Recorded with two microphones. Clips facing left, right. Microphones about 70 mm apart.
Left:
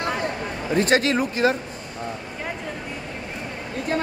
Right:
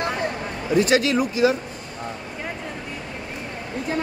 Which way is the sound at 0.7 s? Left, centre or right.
Left.